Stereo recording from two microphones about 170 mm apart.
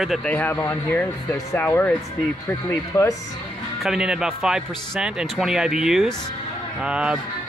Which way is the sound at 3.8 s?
5° right (ahead or behind).